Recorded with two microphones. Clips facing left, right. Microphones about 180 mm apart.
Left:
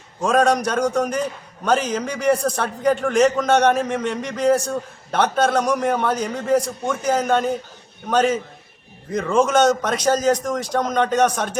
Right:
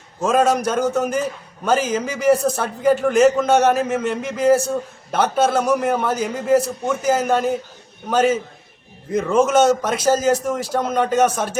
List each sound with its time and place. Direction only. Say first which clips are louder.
0.2 s a man's voice: even; 5° right (ahead or behind)